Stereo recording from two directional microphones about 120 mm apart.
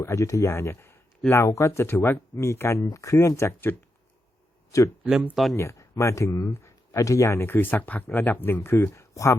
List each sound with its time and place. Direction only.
0.0 s speech: 25° left (ahead or behind)
5.0 s speech: 5° right (ahead or behind)
5.5 s speech: 25° left (ahead or behind)